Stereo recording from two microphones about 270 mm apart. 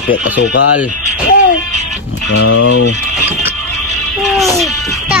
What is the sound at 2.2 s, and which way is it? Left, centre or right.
Speech, left.